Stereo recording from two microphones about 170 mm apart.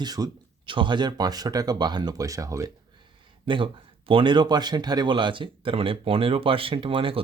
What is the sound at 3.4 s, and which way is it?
Speech, 30° right (ahead or behind).